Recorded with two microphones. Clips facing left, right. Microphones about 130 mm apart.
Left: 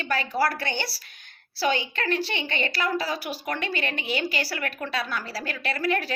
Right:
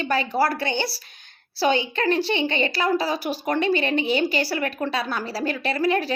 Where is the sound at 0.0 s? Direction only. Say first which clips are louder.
Right 3 dB; 25° right (ahead or behind).